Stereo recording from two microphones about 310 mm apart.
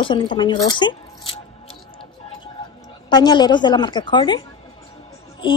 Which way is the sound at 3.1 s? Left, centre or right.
Centre.